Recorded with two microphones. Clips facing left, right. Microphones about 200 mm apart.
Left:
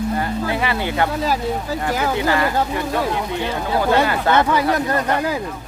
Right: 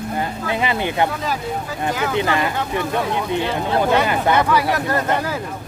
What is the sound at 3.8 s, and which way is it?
Speech, 20° right (ahead or behind).